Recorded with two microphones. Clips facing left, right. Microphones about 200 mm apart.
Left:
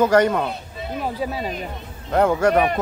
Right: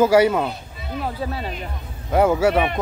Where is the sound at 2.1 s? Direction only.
5° right (ahead or behind).